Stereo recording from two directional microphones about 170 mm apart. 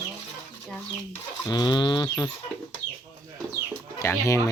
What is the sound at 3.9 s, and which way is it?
Speech, 20° left (ahead or behind).